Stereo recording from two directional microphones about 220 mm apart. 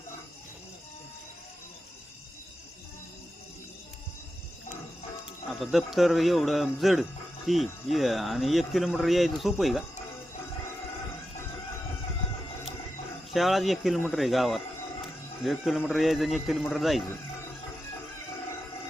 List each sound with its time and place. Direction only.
5.5 s speech: centre (ahead or behind)
13.3 s speech: centre (ahead or behind)